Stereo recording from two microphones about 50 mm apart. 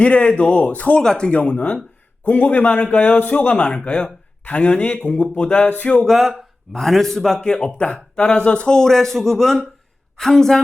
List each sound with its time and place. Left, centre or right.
0.0 s speech: left
0.9 s speech: centre
5.6 s a sound: left
6.1 s a man's voice: centre